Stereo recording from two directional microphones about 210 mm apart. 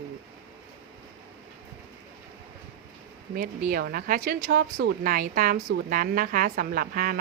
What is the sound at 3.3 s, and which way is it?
A woman's voice, 45° right (ahead or behind).